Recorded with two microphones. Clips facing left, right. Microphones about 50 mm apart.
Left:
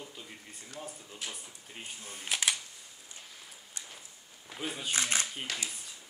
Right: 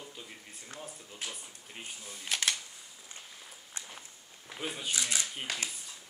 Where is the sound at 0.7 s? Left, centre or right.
Centre.